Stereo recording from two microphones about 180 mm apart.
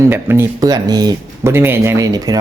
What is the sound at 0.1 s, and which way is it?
Speech, 10° right (ahead or behind).